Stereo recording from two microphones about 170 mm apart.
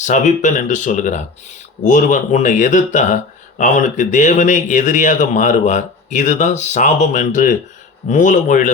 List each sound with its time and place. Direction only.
0.0 s speech: 45° left (ahead or behind)